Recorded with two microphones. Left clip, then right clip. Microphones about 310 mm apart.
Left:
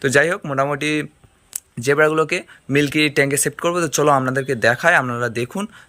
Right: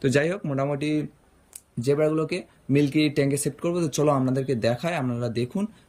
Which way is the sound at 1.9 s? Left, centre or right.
Left.